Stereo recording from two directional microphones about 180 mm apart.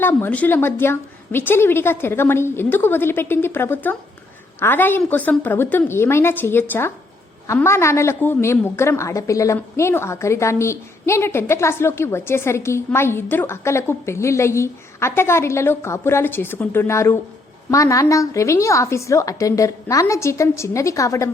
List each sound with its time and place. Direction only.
0.0 s a woman's voice: 10° left (ahead or behind)